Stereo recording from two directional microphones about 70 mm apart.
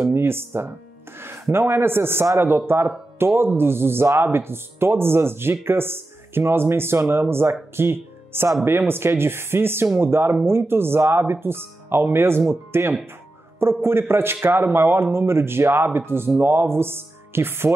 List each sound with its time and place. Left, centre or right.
0.1 s a man's voice: right
7.7 s music: right
8.6 s a man's voice: right